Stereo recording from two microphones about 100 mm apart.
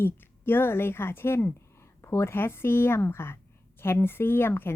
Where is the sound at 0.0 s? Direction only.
20° left (ahead or behind).